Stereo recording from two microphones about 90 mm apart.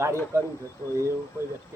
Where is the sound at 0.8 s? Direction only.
30° left (ahead or behind).